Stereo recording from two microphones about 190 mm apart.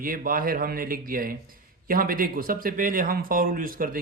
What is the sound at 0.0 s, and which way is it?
Speech, 50° right (ahead or behind).